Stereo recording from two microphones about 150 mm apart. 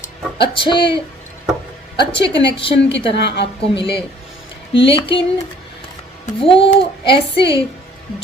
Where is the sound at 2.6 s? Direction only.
35° left (ahead or behind).